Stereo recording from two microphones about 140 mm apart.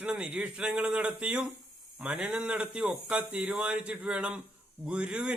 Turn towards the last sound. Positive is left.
turn(degrees=-5)  # may be behind; listen again after turning